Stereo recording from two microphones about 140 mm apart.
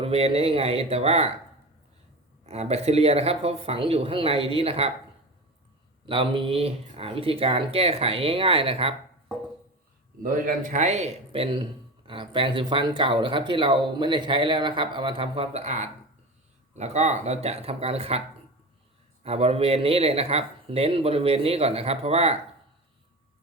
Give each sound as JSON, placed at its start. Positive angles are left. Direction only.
{"t": 0.0, "sound": "speech", "side_deg": -45}
{"t": 2.5, "sound": "speech", "side_deg": -50}
{"t": 6.1, "sound": "speech", "side_deg": -40}
{"t": 10.2, "sound": "a man's voice", "side_deg": -80}
{"t": 19.2, "sound": "speech", "side_deg": -45}